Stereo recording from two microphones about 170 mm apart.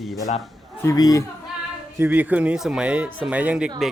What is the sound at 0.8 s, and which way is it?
Speech, 20° left (ahead or behind).